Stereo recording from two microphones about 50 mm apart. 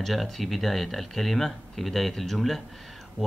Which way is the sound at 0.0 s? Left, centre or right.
Centre.